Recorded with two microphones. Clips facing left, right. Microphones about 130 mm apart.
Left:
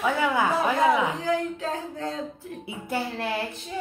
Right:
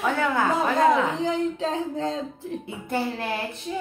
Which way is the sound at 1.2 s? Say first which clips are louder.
Right 2 dB; 20° right (ahead or behind).